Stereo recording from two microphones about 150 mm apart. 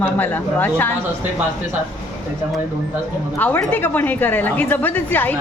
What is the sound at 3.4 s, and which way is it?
A woman's voice, 10° left (ahead or behind).